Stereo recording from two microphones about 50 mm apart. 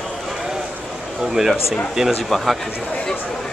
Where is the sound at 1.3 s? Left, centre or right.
Centre.